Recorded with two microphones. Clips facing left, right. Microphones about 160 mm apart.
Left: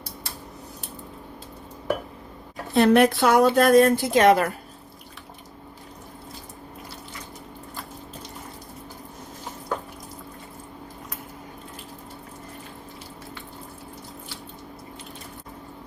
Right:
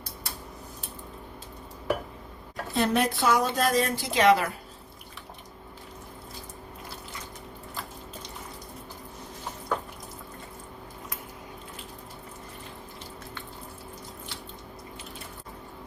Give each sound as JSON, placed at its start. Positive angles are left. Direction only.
{"t": 2.7, "sound": "a woman's voice", "side_deg": 65}